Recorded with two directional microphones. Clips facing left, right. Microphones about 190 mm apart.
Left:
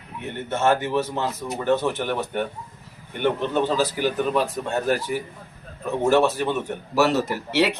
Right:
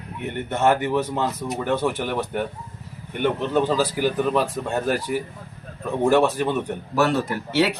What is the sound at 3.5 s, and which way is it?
Speech, 10° right (ahead or behind).